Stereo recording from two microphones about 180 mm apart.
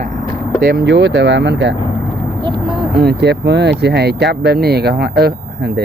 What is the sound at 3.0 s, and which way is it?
Speech, 65° right (ahead or behind).